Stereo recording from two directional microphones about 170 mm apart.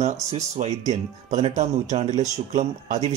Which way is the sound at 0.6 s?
40° right (ahead or behind).